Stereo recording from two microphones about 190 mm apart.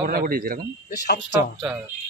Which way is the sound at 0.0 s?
50° right (ahead or behind).